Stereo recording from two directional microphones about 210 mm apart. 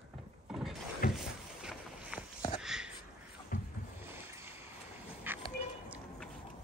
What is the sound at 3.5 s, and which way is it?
Boat, 40° left (ahead or behind).